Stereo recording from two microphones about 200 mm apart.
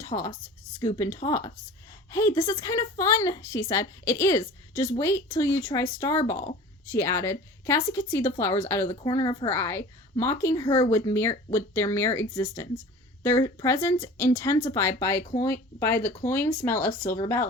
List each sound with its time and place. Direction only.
0.0 s a woman's voice: 15° left (ahead or behind)
13.2 s a woman's voice: 15° left (ahead or behind)